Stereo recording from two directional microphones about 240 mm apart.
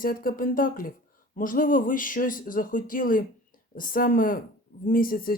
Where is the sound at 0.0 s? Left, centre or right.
Left.